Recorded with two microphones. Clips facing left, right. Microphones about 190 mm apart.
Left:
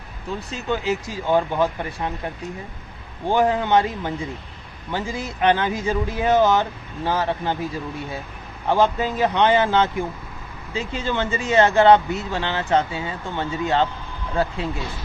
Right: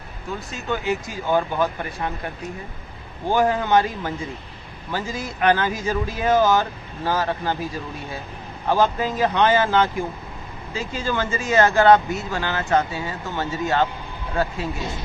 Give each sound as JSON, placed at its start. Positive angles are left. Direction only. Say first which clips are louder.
{"t": 0.5, "sound": "speech", "louder": "left 1 dB", "side_deg": 30}
{"t": 3.2, "sound": "speech", "louder": "left 1 dB", "side_deg": 20}
{"t": 8.7, "sound": "speech", "louder": "left 1 dB", "side_deg": 20}